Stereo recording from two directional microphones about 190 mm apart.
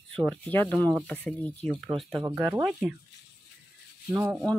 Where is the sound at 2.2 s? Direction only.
20° right (ahead or behind).